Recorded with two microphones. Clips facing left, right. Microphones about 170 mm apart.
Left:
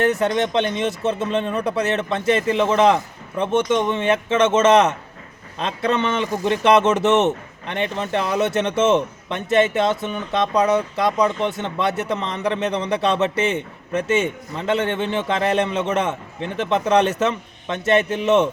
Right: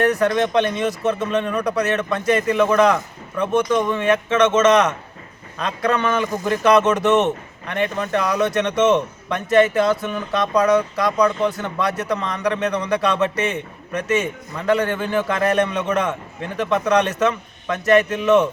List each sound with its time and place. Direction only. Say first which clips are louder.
0.0 s speech: right 1 dB; 25° left (ahead or behind)